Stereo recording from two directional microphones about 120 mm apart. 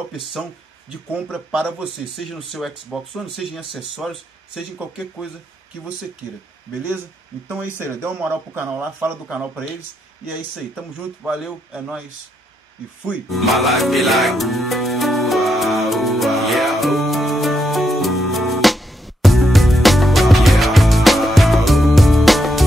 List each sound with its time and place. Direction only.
0.1 s speech: centre (ahead or behind)
7.8 s speech: 20° right (ahead or behind)
10.8 s speech: 5° right (ahead or behind)
13.3 s music: centre (ahead or behind)